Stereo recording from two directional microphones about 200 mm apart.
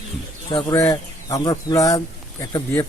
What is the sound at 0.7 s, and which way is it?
Speech, 15° left (ahead or behind).